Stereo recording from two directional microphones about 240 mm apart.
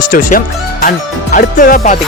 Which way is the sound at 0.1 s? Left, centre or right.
Left.